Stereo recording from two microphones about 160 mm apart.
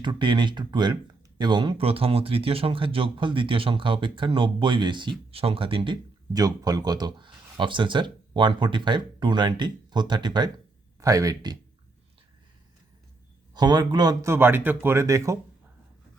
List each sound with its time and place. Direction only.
0.0 s speech: 30° right (ahead or behind)
13.5 s speech: 25° right (ahead or behind)